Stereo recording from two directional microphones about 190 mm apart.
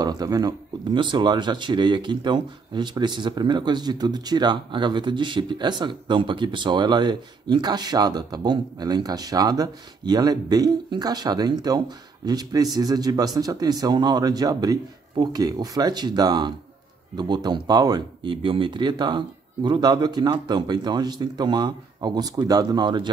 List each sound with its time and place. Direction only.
0.0 s speech: 20° right (ahead or behind)